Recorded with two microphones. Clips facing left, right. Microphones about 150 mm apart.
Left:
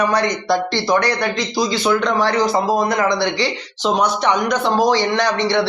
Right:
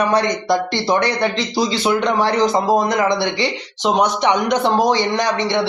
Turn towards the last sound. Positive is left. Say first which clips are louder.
# left 1 dB
turn(degrees=-20)  # may be behind; listen again after turning